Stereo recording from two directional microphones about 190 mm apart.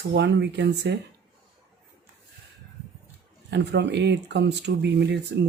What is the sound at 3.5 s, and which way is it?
Speech, 65° right (ahead or behind).